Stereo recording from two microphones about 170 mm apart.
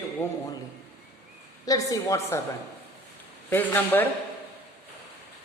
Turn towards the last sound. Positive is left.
turn(degrees=10)  # may be behind; listen again after turning